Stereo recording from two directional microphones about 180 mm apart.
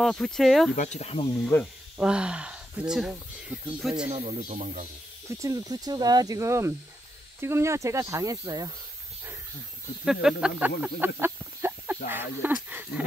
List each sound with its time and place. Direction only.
0.0 s speech: centre (ahead or behind)
0.7 s speech: 40° left (ahead or behind)
1.4 s speech: 5° left (ahead or behind)
2.0 s speech: 5° right (ahead or behind)
4.1 s speech: 35° right (ahead or behind)
5.3 s speech: 20° right (ahead or behind)
10.0 s speech: 5° right (ahead or behind)
12.6 s wild animals: 10° right (ahead or behind)